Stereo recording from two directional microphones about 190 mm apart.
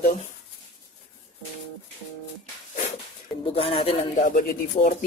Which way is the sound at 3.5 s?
30° left (ahead or behind).